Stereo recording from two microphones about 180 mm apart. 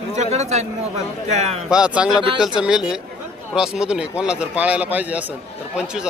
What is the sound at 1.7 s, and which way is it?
A man's voice, 5° right (ahead or behind).